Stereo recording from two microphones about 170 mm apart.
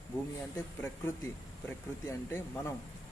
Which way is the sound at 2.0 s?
15° left (ahead or behind).